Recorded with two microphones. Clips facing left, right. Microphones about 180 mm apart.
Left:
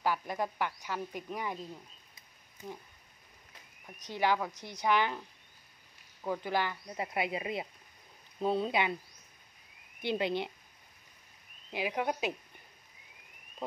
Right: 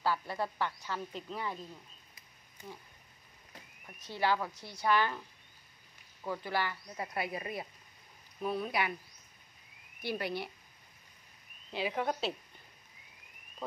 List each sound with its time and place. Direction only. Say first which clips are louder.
0.0 s speech: left 1 dB; 15° left (ahead or behind)
4.0 s speech: left 1 dB; 15° left (ahead or behind)
6.2 s speech: left 2 dB; 15° left (ahead or behind)
10.0 s speech: left 4 dB; 20° left (ahead or behind)
11.7 s speech: left 1 dB; 10° left (ahead or behind)
13.6 s speech: left 2 dB; 20° left (ahead or behind)